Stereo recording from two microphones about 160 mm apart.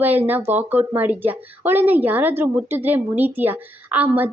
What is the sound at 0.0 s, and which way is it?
Speech, 10° right (ahead or behind).